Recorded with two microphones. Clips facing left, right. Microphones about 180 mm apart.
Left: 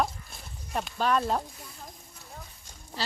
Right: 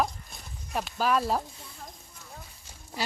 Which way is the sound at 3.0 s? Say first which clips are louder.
Right 2 dB; 10° right (ahead or behind).